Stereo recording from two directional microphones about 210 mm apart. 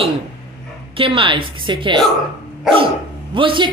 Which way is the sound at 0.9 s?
25° right (ahead or behind).